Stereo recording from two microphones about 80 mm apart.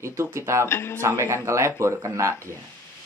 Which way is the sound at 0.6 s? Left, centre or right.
Left.